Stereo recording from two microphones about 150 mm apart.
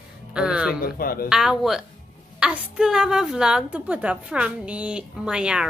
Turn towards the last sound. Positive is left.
turn(degrees=-5)  # may be behind; listen again after turning